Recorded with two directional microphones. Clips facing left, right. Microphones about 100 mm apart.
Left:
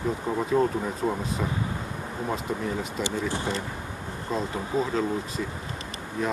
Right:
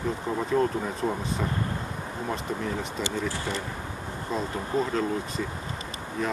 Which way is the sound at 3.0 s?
20° left (ahead or behind).